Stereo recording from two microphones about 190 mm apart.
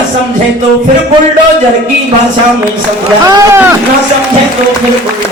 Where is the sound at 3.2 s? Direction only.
15° right (ahead or behind).